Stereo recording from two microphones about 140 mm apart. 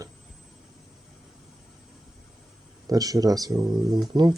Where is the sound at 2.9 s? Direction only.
25° right (ahead or behind).